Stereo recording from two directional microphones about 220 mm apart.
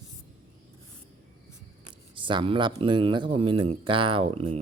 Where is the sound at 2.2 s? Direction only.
20° right (ahead or behind).